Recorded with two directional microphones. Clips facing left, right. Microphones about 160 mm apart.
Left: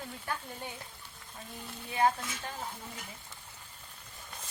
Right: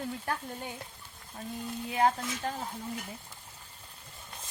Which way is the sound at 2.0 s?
40° right (ahead or behind).